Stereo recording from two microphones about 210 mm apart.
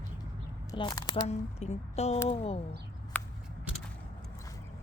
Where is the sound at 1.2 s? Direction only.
30° left (ahead or behind).